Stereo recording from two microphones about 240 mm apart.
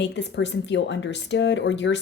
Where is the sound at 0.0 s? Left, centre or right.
Left.